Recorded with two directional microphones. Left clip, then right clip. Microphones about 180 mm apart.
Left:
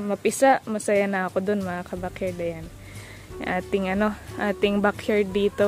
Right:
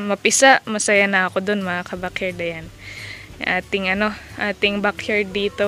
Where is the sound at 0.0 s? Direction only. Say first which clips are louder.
Right 6 dB; centre (ahead or behind).